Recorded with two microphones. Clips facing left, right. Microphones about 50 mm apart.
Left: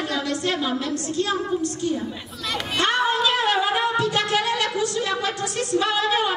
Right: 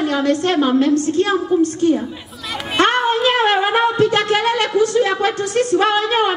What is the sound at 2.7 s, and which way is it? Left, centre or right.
Music, right.